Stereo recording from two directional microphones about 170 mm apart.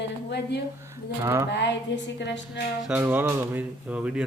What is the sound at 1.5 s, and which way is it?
A woman's voice, 90° left.